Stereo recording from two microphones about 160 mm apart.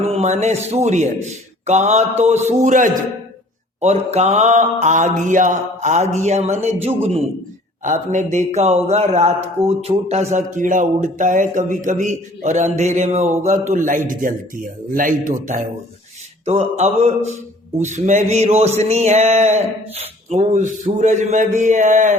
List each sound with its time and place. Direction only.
0.0 s speech: 40° right (ahead or behind); by 15.1 s 60° right (ahead or behind)
16.5 s speech: 45° right (ahead or behind)